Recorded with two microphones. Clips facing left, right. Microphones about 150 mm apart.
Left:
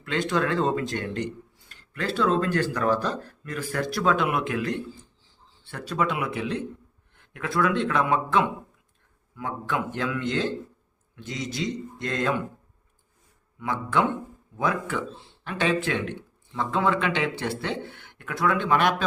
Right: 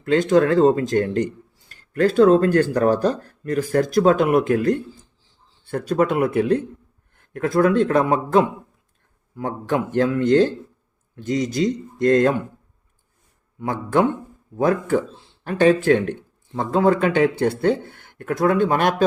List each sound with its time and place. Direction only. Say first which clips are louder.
0.0 s speech: right 9 dB; 40° right (ahead or behind)
13.6 s speech: right 5 dB; 40° right (ahead or behind)